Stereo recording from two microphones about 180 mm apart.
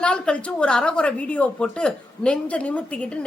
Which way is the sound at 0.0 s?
5° left (ahead or behind).